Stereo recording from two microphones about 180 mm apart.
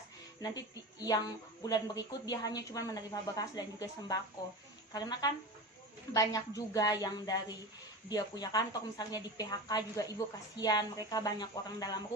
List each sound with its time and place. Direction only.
0.5 s speech: 20° left (ahead or behind)